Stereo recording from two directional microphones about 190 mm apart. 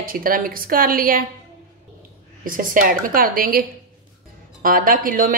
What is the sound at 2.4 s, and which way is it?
A woman's voice, 45° right (ahead or behind).